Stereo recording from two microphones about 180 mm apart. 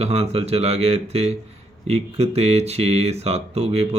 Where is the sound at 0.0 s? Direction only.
35° right (ahead or behind).